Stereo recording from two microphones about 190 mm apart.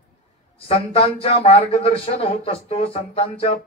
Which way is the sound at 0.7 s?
30° left (ahead or behind).